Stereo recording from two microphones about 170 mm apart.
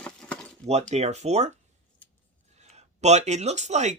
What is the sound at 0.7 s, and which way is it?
Speech, 40° right (ahead or behind).